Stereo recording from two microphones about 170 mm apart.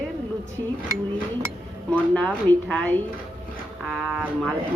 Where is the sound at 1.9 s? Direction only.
5° left (ahead or behind).